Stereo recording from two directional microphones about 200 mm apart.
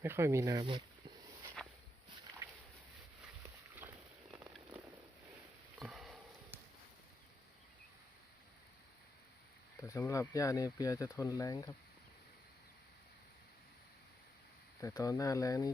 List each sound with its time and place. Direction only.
0.0 s speech: 10° right (ahead or behind)
3.8 s a sound: 5° right (ahead or behind)
5.8 s sniff: centre (ahead or behind)
9.8 s speech: 15° left (ahead or behind)
14.8 s speech: 15° left (ahead or behind)